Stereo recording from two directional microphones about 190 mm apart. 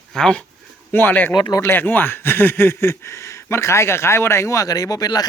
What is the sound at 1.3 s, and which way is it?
Speech, 20° left (ahead or behind).